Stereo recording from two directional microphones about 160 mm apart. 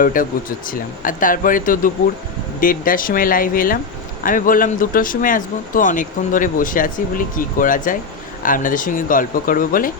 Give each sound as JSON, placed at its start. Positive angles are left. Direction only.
{"t": 0.0, "sound": "speech", "side_deg": 60}